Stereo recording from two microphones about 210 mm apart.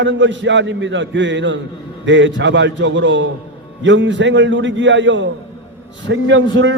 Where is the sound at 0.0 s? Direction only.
60° right (ahead or behind).